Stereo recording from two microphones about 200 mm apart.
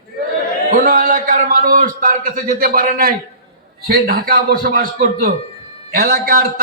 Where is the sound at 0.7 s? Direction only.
45° right (ahead or behind).